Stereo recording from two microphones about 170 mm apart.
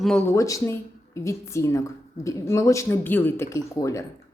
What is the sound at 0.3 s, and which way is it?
Speech, 20° left (ahead or behind).